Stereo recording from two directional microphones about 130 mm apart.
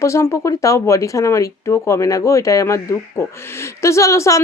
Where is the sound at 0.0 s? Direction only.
20° left (ahead or behind).